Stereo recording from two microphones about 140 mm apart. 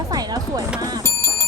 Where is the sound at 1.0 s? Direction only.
20° left (ahead or behind).